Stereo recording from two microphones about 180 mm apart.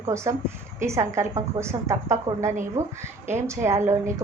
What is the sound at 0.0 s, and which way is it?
A woman's voice, 15° right (ahead or behind).